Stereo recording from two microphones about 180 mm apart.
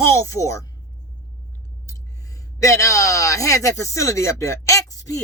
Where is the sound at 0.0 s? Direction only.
15° left (ahead or behind).